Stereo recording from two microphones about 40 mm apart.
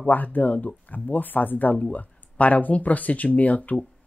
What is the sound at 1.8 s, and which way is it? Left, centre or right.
Speech, left.